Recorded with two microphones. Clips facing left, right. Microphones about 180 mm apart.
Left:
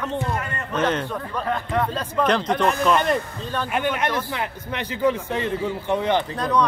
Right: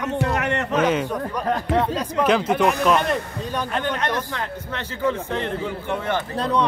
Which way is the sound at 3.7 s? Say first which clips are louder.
Left 2 dB; 10° left (ahead or behind).